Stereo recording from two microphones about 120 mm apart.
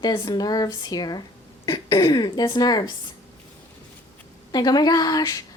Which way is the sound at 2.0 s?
35° left (ahead or behind).